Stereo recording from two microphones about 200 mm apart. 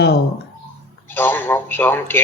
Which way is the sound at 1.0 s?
10° left (ahead or behind).